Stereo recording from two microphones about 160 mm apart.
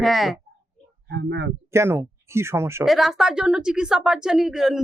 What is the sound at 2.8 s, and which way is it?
A woman's voice, centre (ahead or behind).